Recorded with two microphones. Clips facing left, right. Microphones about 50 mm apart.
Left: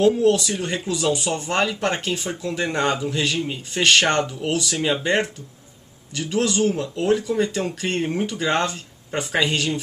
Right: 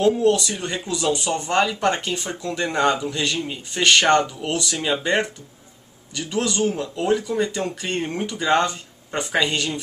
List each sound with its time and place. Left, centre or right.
0.0 s speech: centre
4.0 s a man's voice: centre
6.6 s speech: centre